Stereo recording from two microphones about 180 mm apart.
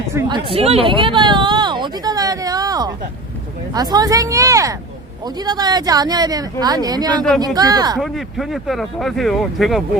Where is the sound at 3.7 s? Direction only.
20° right (ahead or behind).